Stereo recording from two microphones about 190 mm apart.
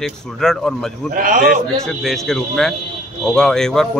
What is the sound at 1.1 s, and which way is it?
Speech, 45° right (ahead or behind).